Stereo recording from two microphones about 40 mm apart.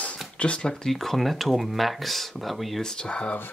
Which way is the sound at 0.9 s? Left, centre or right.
Centre.